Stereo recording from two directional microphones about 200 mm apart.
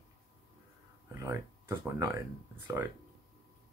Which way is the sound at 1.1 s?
15° right (ahead or behind).